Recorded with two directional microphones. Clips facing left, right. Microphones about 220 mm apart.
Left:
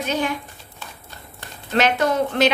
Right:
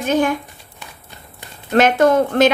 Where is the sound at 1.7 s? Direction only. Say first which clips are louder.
Right 6 dB; 50° right (ahead or behind).